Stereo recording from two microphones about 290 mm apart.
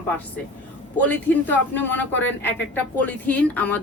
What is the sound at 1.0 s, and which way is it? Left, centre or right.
A woman's voice, centre.